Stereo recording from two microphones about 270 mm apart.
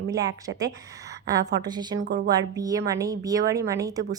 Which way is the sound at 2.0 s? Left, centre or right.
Right.